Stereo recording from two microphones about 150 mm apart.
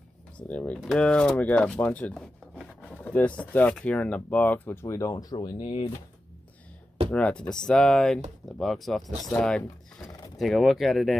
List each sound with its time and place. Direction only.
0.4 s speech: 10° left (ahead or behind)
2.8 s speech: 10° left (ahead or behind); by 5.7 s 25° left (ahead or behind)
7.1 s speech: 10° left (ahead or behind)
10.0 s a sound: 25° left (ahead or behind)
10.4 s speech: centre (ahead or behind)